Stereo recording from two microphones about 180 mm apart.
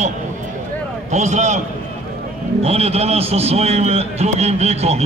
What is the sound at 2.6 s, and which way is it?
A man's voice, 35° right (ahead or behind).